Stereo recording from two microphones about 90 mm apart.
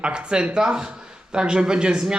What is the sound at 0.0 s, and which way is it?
Speech, 10° right (ahead or behind).